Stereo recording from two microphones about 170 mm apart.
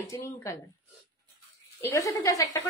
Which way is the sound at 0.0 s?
20° left (ahead or behind).